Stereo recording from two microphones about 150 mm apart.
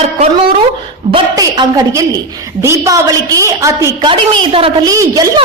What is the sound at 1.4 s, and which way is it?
A woman's voice, 25° right (ahead or behind).